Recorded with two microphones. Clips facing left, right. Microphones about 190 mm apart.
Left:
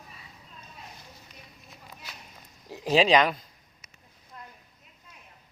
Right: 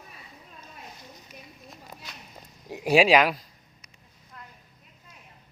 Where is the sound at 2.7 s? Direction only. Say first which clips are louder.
Right 2 dB; 15° right (ahead or behind).